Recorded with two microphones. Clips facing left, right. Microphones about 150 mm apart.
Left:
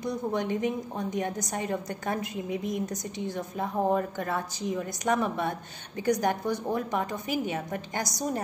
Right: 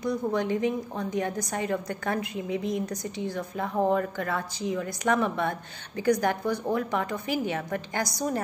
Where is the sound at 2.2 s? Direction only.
45° left (ahead or behind).